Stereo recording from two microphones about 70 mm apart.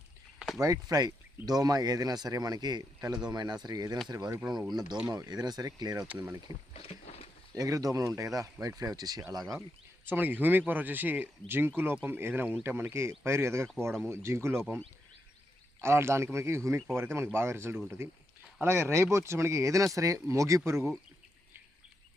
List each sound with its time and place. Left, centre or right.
0.6 s speech: right
4.1 s speech: right
4.7 s speech: right
5.0 s speech: right
6.5 s speech: right
7.5 s speech: right
9.4 s speech: centre
10.1 s speech: right
15.8 s speech: right